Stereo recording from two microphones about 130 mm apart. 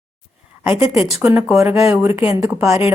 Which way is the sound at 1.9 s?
15° right (ahead or behind).